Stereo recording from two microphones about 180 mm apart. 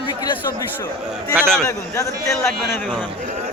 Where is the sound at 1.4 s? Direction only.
5° left (ahead or behind).